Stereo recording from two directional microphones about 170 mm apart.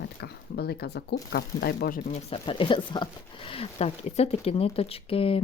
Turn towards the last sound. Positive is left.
turn(degrees=35)  # may be behind; listen again after turning